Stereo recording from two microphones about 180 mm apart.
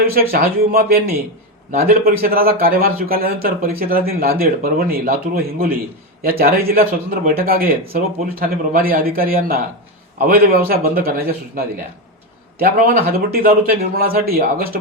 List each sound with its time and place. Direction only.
0.1 s speech: 55° right (ahead or behind)
13.1 s speech: 55° right (ahead or behind)